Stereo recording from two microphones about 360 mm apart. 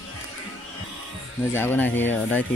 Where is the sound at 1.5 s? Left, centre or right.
Centre.